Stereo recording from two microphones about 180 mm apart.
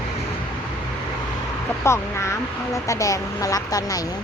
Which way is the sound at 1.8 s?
15° left (ahead or behind).